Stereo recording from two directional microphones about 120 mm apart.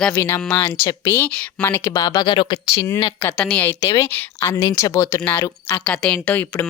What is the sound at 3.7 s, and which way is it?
Speech, 25° left (ahead or behind).